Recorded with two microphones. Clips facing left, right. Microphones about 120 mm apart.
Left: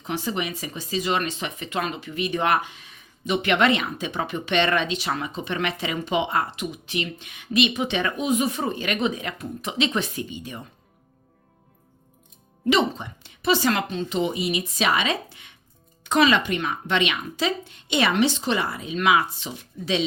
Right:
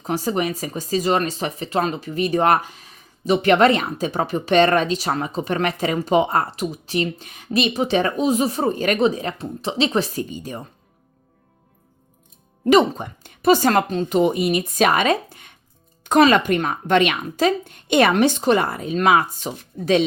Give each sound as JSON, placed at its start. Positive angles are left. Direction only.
{"t": 0.0, "sound": "speech", "side_deg": -40}
{"t": 12.6, "sound": "a woman's voice", "side_deg": -45}